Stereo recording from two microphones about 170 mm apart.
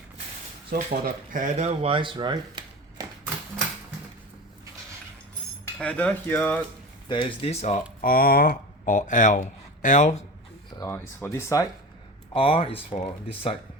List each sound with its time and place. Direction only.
0.7 s speech: 60° right (ahead or behind); by 3.1 s 25° right (ahead or behind)
5.8 s speech: 5° left (ahead or behind)
7.1 s speech: 30° left (ahead or behind)
8.0 s speech: 60° left (ahead or behind)
8.8 s speech: 50° left (ahead or behind)
10.8 s speech: 15° left (ahead or behind)
12.3 s speech: 35° left (ahead or behind)